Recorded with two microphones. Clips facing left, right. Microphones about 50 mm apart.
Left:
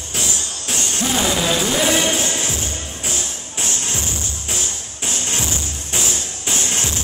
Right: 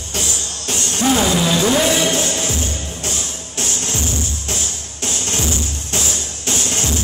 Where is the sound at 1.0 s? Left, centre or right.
Centre.